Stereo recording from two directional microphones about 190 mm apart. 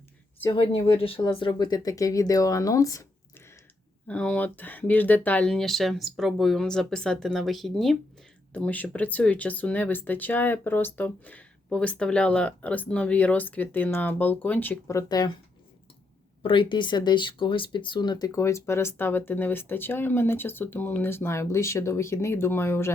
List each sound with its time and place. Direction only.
0.5 s speech: 30° left (ahead or behind)
4.0 s speech: 5° left (ahead or behind)
16.4 s speech: 25° left (ahead or behind)